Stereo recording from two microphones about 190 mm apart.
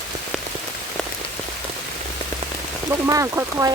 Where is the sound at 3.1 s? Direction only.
15° right (ahead or behind).